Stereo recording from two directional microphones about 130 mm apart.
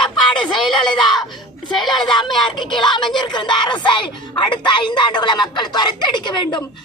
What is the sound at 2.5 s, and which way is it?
Speech, 35° left (ahead or behind).